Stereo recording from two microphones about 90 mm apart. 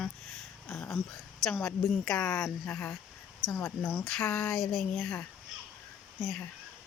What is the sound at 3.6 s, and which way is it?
Speech, 30° left (ahead or behind).